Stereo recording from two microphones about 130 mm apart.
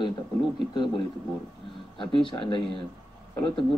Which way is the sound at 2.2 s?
40° left (ahead or behind).